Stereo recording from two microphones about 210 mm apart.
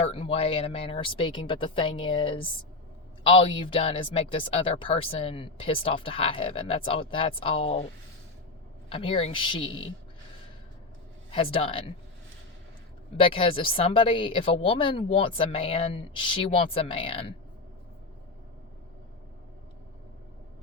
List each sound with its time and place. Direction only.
0.0 s speech: 30° left (ahead or behind)
8.9 s speech: 25° left (ahead or behind)
11.3 s speech: 25° left (ahead or behind)
13.1 s speech: 25° left (ahead or behind)